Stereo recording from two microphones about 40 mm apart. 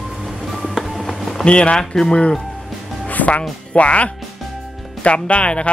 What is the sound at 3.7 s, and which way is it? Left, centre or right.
Speech, left.